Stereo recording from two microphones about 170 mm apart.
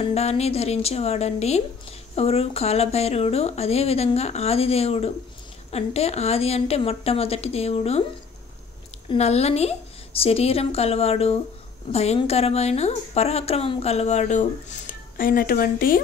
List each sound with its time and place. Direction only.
0.0 s a woman's voice: 40° left (ahead or behind)
9.1 s a woman's voice: 40° left (ahead or behind); by 16.0 s 60° left (ahead or behind)